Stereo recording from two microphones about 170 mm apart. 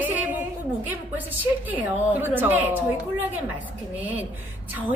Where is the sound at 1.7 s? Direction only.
10° right (ahead or behind).